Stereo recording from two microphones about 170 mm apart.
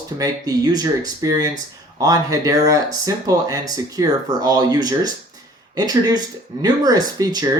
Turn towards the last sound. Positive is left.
turn(degrees=-20)  # may be behind; listen again after turning